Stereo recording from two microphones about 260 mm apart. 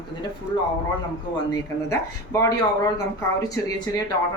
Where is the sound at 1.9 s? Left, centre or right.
Centre.